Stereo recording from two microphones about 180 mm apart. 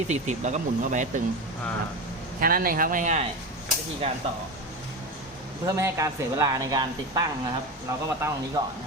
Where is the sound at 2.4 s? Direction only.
55° right (ahead or behind).